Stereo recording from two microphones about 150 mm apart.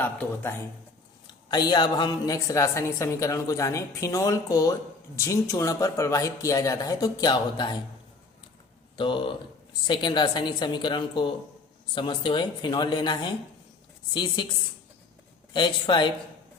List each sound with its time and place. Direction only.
0.0 s a man's voice: 10° left (ahead or behind)
1.5 s a woman's voice: 30° left (ahead or behind)
9.0 s a woman's voice: 35° left (ahead or behind)
15.5 s a woman's voice: 30° left (ahead or behind)